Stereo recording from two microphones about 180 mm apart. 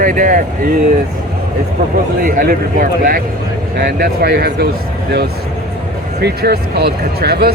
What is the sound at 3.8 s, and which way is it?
Speech, 65° right (ahead or behind).